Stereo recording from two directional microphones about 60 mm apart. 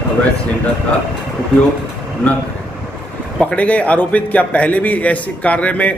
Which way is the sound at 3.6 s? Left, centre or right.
Left.